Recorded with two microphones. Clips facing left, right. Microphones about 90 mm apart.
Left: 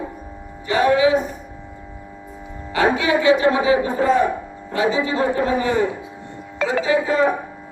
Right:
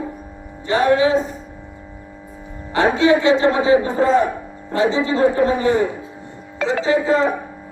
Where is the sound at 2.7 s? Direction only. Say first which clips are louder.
Right 3 dB; 30° right (ahead or behind).